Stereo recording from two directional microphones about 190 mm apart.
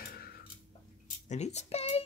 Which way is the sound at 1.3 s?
35° left (ahead or behind).